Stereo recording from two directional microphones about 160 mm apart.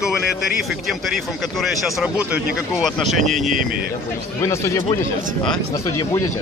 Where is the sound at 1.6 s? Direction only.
5° right (ahead or behind).